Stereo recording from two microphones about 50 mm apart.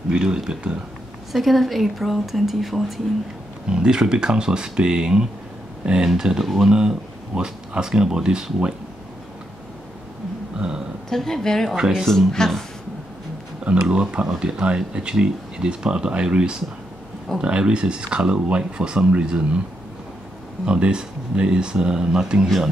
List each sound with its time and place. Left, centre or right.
0.1 s speech: centre
1.3 s a woman's voice: centre
3.1 s a woman's voice: centre
3.6 s a woman's voice: centre
7.3 s speech: centre
10.6 s burping: right
11.1 s a woman's voice: centre
11.7 s speech: centre
12.0 s a woman's voice: centre
13.8 s speech: centre
20.6 s speech: centre